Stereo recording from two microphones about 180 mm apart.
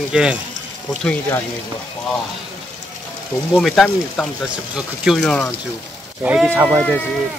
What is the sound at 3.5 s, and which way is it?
Speech, 5° left (ahead or behind).